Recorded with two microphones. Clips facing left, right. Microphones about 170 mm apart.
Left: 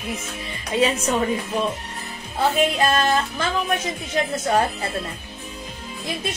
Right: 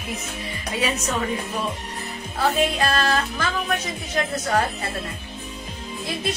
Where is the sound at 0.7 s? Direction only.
30° left (ahead or behind).